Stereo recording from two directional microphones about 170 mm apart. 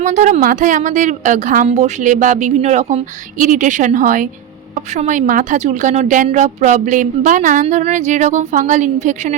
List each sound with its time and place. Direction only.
0.0 s a woman's voice: 45° right (ahead or behind)